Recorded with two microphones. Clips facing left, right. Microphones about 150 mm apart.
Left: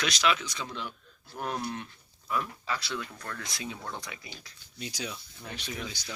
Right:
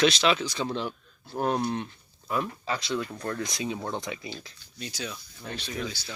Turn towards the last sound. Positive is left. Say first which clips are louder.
# right 4 dB
turn(degrees=15)  # may be behind; listen again after turning